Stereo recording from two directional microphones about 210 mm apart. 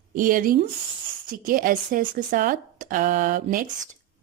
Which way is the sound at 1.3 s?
40° right (ahead or behind).